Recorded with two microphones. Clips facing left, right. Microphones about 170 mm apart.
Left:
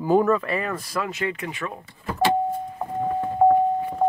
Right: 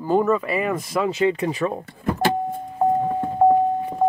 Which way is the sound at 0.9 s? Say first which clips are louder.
Right 9 dB; 25° right (ahead or behind).